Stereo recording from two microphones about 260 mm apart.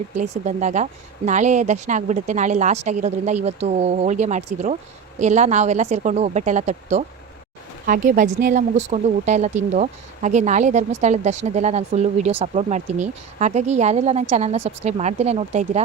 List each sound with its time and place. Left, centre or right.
0.2 s speech: right